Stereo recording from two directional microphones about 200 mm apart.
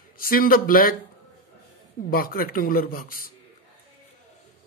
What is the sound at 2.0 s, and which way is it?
A man's voice, 45° left (ahead or behind).